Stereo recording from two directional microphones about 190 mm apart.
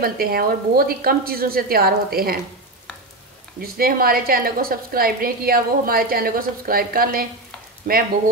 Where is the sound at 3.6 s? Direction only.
50° right (ahead or behind).